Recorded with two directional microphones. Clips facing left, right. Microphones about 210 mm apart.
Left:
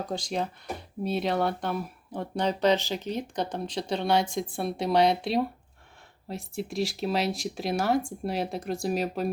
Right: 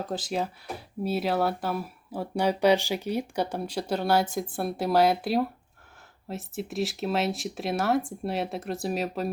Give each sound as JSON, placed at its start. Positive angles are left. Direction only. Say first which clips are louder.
{"t": 0.0, "sound": "speech", "louder": "right 1 dB", "side_deg": -5}